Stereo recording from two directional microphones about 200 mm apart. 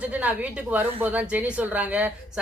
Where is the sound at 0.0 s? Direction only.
5° right (ahead or behind).